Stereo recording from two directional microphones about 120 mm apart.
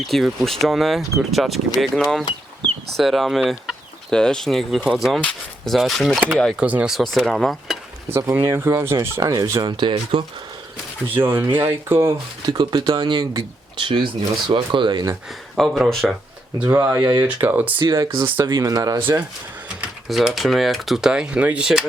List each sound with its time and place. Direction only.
0.1 s speech: centre (ahead or behind)
6.6 s speech: 10° right (ahead or behind)
6.9 s speech: 5° left (ahead or behind)
8.1 s speech: 20° right (ahead or behind)
9.7 s speech: 45° right (ahead or behind)
11.1 s speech: 15° right (ahead or behind)
12.5 s speech: 35° right (ahead or behind)
15.5 s speech: centre (ahead or behind)
16.8 s speech: 10° right (ahead or behind)
18.5 s speech: 30° right (ahead or behind)
20.1 s speech: centre (ahead or behind)